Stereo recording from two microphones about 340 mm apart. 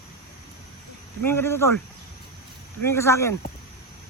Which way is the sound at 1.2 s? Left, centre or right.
Centre.